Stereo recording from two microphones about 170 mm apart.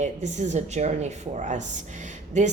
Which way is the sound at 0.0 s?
45° right (ahead or behind).